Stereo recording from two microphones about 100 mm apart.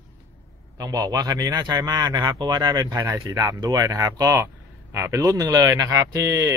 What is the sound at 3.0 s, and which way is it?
Speech, 30° right (ahead or behind).